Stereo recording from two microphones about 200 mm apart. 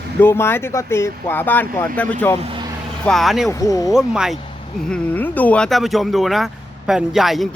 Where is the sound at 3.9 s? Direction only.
5° right (ahead or behind).